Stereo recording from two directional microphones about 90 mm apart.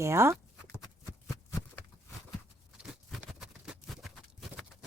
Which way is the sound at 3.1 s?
5° right (ahead or behind).